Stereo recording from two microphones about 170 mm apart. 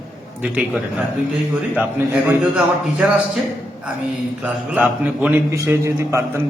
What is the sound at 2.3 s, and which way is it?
Speech, 5° right (ahead or behind).